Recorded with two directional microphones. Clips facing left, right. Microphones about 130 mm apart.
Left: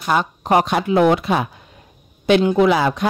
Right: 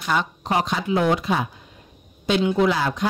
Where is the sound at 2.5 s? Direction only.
70° left (ahead or behind).